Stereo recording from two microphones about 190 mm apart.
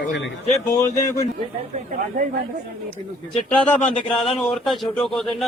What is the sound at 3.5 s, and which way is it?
A man's voice, 5° left (ahead or behind).